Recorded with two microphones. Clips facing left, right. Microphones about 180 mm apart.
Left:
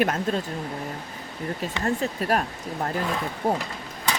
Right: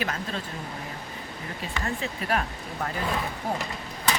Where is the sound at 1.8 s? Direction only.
40° left (ahead or behind).